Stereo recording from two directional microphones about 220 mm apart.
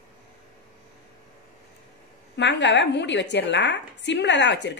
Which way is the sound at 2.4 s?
55° left (ahead or behind).